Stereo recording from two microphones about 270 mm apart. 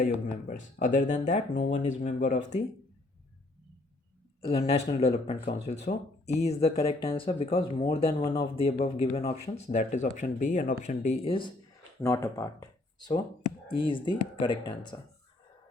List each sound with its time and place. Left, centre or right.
0.4 s speech: left
4.4 s speech: left
11.9 s speech: centre